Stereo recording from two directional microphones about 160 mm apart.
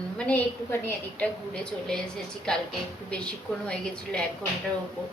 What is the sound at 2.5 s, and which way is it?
Speech, 5° left (ahead or behind).